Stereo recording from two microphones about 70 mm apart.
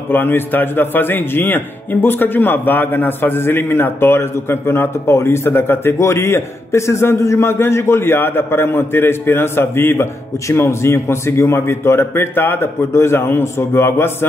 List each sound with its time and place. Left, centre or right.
0.1 s a man's voice: left